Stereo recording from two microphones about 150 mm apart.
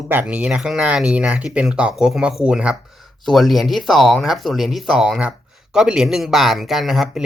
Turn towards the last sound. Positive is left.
turn(degrees=-5)  # may be behind; listen again after turning